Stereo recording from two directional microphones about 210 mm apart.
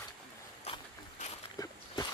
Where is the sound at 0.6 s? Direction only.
30° left (ahead or behind).